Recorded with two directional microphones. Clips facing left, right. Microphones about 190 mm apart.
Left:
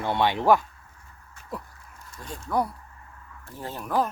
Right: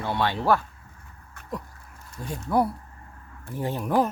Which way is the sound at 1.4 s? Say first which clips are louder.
Right 3 dB; 60° right (ahead or behind).